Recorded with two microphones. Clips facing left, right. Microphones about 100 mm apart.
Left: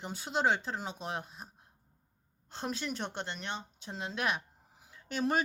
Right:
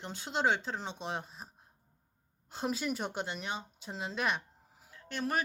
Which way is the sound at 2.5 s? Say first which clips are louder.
Right 3 dB; 5° right (ahead or behind).